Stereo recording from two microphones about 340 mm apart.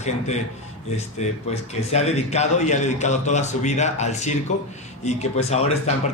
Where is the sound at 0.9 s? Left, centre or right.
Centre.